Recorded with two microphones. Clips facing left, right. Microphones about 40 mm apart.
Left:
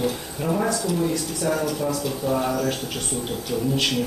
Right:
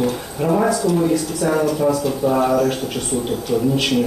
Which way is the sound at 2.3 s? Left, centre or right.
Right.